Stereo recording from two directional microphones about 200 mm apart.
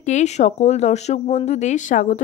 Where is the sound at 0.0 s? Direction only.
35° left (ahead or behind).